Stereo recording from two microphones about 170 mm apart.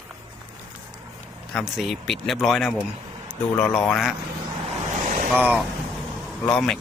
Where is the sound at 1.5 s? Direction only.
Centre (ahead or behind).